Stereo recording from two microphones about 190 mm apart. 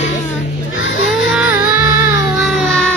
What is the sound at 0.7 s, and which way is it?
Baby cry, 85° left.